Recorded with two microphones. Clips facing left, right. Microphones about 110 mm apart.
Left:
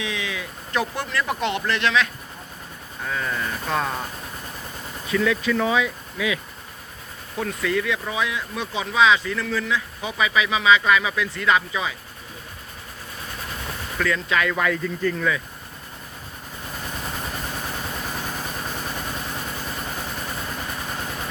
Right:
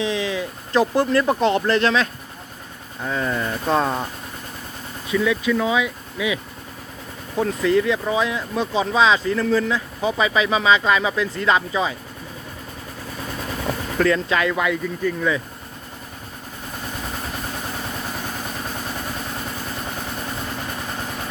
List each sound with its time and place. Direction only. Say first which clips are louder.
0.0 s a sound: right 7 dB; 35° right (ahead or behind)
1.2 s speech: right 6 dB; 35° right (ahead or behind)
3.0 s speech: right 4 dB; 25° right (ahead or behind)
5.1 s speech: right 2 dB; 15° right (ahead or behind)
7.3 s speech: right 6 dB; 30° right (ahead or behind)
14.0 s speech: right 4 dB; 35° right (ahead or behind)
14.5 s speech: right 1 dB; 10° right (ahead or behind)